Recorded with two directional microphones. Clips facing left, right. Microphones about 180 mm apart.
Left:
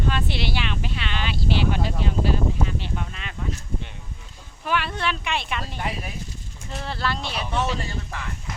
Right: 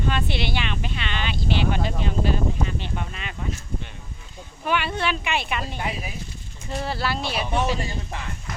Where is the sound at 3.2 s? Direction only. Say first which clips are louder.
Even; 5° right (ahead or behind).